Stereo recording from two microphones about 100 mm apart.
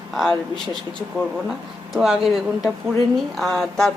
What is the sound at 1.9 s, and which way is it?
Speech, 5° right (ahead or behind).